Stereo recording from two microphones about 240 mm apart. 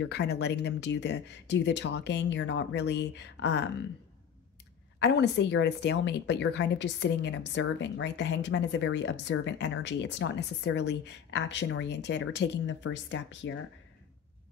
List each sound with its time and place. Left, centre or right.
0.0 s speech: left
4.9 s speech: left